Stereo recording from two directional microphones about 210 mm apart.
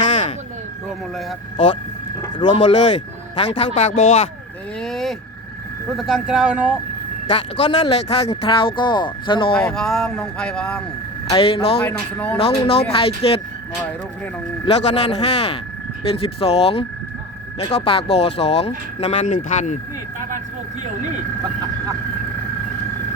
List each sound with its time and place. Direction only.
2.4 s speech: 20° left (ahead or behind)
4.8 s vehicle: centre (ahead or behind)
6.0 s speech: centre (ahead or behind)
7.6 s speech: 30° left (ahead or behind)
9.6 s speech: centre (ahead or behind)
11.3 s speech: 25° left (ahead or behind)
11.9 s speech: 5° left (ahead or behind)
12.4 s speech: 30° left (ahead or behind)
14.6 s speech: 30° left (ahead or behind)